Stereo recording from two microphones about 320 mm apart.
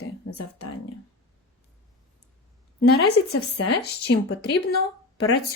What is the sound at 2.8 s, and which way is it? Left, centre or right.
Speech, left.